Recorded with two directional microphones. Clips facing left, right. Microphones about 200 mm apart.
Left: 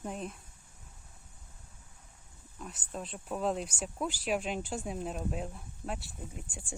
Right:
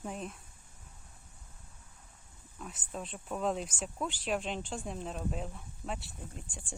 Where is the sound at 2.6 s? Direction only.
Centre (ahead or behind).